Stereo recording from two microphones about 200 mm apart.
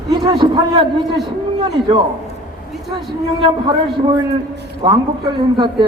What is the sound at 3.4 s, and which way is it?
A man's voice, 25° right (ahead or behind).